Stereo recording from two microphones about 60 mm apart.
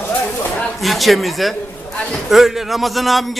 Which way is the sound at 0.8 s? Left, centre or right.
Centre.